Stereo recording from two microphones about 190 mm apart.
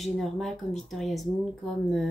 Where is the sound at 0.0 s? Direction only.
Centre (ahead or behind).